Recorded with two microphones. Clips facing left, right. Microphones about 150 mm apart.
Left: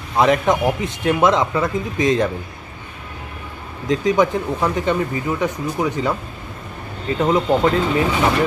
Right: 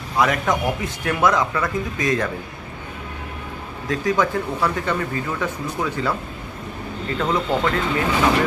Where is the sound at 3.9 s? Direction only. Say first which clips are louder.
Left 4 dB; 20° left (ahead or behind).